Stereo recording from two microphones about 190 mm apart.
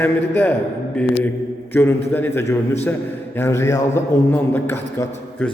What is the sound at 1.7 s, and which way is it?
A man's voice, 10° left (ahead or behind).